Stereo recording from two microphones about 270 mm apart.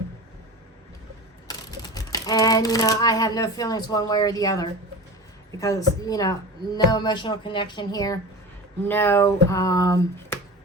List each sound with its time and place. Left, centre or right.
1.5 s speech: centre
5.5 s music: centre